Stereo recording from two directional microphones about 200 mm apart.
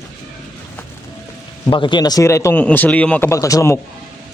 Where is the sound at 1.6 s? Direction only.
25° left (ahead or behind).